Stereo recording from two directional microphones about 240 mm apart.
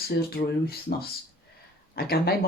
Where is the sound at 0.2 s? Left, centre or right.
Left.